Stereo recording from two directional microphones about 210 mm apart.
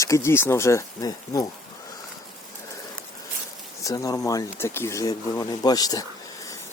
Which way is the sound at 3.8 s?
15° left (ahead or behind).